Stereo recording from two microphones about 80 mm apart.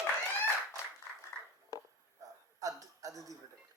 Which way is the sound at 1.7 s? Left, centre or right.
Left.